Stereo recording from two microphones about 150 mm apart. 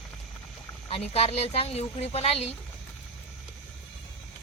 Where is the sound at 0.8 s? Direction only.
40° left (ahead or behind).